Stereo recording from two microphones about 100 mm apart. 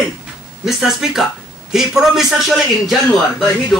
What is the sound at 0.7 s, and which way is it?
A man's voice, 5° right (ahead or behind).